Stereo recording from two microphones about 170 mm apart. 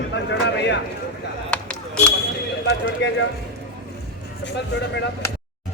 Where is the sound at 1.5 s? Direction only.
5° left (ahead or behind).